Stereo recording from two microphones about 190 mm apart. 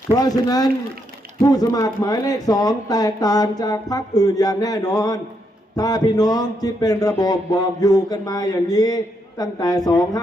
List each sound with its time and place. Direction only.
0.1 s speech: 20° left (ahead or behind)